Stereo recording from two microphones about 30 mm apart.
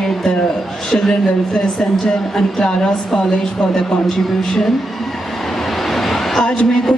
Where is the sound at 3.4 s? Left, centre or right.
Centre.